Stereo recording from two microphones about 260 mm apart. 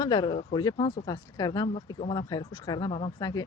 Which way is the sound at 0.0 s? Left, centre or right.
Centre.